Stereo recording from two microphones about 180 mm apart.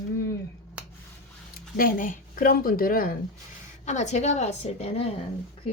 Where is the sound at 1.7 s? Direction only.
50° left (ahead or behind).